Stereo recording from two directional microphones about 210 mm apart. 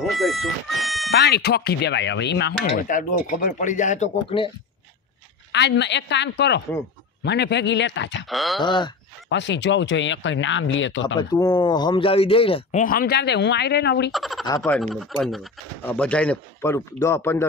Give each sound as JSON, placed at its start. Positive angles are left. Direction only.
{"t": 0.0, "sound": "speech", "side_deg": 0}
{"t": 1.1, "sound": "speech", "side_deg": 50}
{"t": 2.9, "sound": "speech", "side_deg": 40}
{"t": 5.5, "sound": "speech", "side_deg": 55}
{"t": 8.3, "sound": "speech", "side_deg": 0}
{"t": 8.6, "sound": "speech", "side_deg": 20}
{"t": 9.3, "sound": "speech", "side_deg": 60}
{"t": 11.1, "sound": "speech", "side_deg": 20}
{"t": 12.8, "sound": "speech", "side_deg": 45}
{"t": 14.1, "sound": "speech", "side_deg": 0}
{"t": 14.4, "sound": "speech", "side_deg": 15}
{"t": 14.8, "sound": "speech", "side_deg": 0}